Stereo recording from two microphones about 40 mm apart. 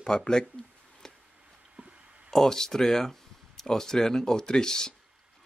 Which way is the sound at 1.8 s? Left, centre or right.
Right.